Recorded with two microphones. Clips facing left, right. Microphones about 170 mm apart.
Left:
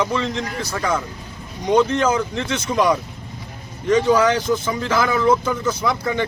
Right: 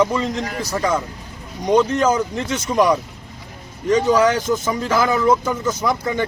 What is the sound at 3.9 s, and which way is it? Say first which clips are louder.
Speech: even; 45° right (ahead or behind).